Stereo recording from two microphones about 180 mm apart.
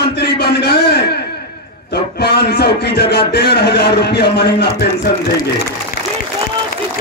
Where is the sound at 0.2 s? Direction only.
65° left (ahead or behind).